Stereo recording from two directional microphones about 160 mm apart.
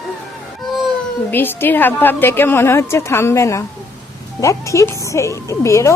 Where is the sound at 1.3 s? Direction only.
10° left (ahead or behind).